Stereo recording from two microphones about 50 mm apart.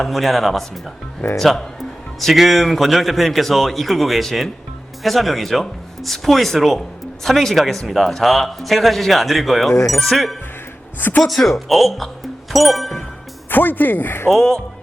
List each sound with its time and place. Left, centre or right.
0.0 s speech: centre
13.5 s speech: left
14.3 s speech: centre